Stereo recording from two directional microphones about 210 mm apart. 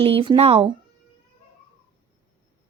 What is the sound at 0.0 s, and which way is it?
Speech, 25° right (ahead or behind).